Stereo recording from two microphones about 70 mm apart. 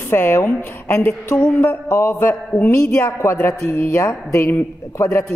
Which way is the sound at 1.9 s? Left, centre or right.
Left.